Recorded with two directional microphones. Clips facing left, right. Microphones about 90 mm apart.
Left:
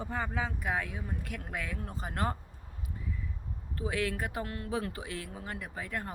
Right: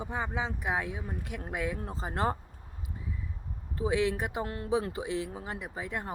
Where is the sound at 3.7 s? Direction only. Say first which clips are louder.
Right 5 dB; 20° right (ahead or behind).